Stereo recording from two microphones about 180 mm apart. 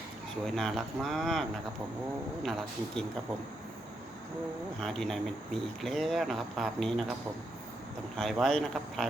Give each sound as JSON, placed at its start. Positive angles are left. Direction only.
{"t": 0.4, "sound": "speech", "side_deg": 0}
{"t": 4.8, "sound": "speech", "side_deg": 0}
{"t": 8.1, "sound": "speech", "side_deg": 0}